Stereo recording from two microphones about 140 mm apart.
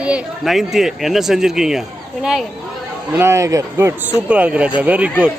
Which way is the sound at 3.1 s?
20° right (ahead or behind).